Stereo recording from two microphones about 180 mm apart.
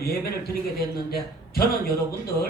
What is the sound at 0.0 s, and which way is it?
Speech, 60° left (ahead or behind).